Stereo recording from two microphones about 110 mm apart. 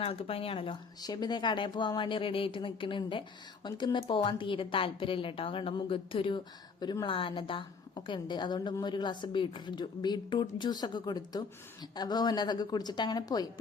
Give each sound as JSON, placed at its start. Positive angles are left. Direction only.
{"t": 0.0, "sound": "speech", "side_deg": 60}
{"t": 1.0, "sound": "speech", "side_deg": 40}
{"t": 7.1, "sound": "a woman's voice", "side_deg": 55}